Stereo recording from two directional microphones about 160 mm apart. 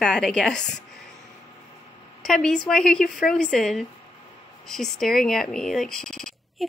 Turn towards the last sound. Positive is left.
turn(degrees=5)  # may be behind; listen again after turning